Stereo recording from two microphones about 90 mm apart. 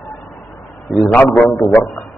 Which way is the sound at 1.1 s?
20° left (ahead or behind).